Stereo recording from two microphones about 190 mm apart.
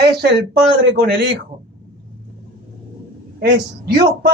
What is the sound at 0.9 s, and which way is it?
Speech, 60° right (ahead or behind).